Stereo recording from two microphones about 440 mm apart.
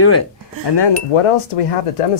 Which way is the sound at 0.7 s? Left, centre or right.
Left.